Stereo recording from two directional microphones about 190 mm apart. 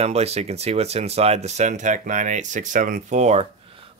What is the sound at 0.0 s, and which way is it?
Speech, 35° right (ahead or behind).